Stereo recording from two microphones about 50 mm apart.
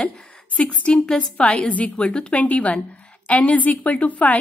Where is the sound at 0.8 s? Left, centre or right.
Centre.